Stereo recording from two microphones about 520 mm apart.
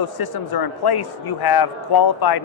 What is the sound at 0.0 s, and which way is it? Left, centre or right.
A man's voice, left.